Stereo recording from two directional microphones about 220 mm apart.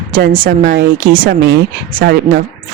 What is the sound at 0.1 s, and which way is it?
Speech, 40° right (ahead or behind).